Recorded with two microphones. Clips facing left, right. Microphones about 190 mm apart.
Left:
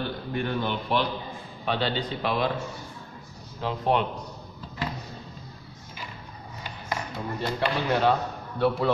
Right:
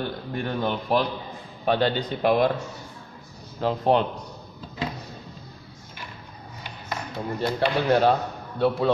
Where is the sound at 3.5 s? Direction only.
35° right (ahead or behind).